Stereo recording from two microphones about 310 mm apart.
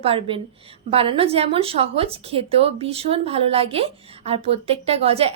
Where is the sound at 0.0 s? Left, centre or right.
Centre.